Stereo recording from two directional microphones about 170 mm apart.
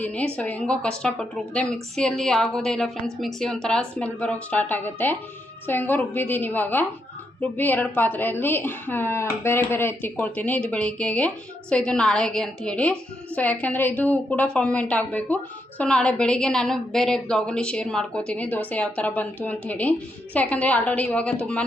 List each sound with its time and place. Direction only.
0.0 s a woman's voice: 10° left (ahead or behind)